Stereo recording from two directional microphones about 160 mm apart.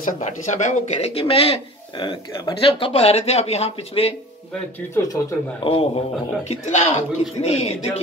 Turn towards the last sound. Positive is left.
turn(degrees=40)  # may be behind; listen again after turning